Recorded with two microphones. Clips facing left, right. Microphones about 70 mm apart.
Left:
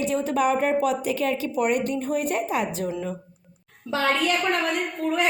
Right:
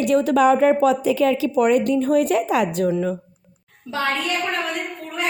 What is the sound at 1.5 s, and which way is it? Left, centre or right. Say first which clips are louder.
A woman's voice: right 6 dB; right.